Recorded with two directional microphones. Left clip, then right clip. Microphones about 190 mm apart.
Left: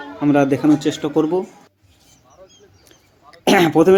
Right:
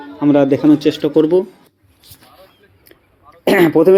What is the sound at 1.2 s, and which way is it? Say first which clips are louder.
Speech: right 6 dB; 10° right (ahead or behind).